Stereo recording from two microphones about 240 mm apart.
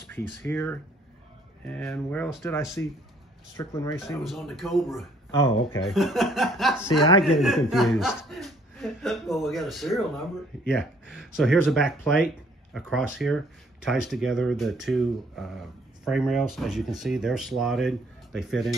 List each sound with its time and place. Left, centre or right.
0.1 s speech: centre
4.0 s speech: centre
5.3 s speech: centre
5.8 s speech: centre
6.9 s speech: left
7.3 s speech: centre